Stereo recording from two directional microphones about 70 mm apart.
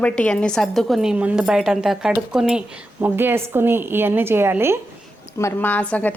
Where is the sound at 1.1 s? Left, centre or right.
Centre.